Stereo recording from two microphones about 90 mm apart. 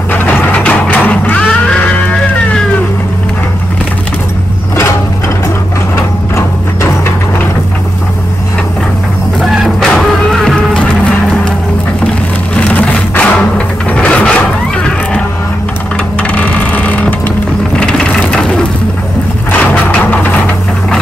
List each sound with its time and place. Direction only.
0.1 s music: 20° left (ahead or behind)
9.4 s music: centre (ahead or behind)
12.5 s music: 15° left (ahead or behind)
16.2 s mechanisms: 15° left (ahead or behind)
17.7 s ratchet: 10° left (ahead or behind)
19.5 s a sound: 20° left (ahead or behind)